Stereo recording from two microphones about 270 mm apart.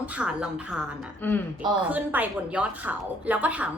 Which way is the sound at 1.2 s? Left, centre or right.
Centre.